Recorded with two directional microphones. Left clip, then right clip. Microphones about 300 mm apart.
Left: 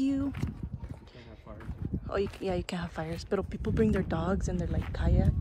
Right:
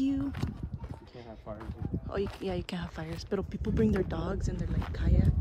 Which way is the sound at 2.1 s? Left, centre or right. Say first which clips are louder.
Left 3 dB; centre.